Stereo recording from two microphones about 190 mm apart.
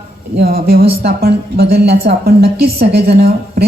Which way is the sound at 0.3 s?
55° right (ahead or behind).